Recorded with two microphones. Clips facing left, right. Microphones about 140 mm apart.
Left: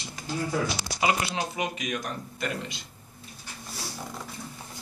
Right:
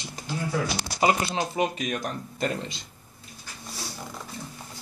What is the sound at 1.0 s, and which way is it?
Speech, 40° right (ahead or behind).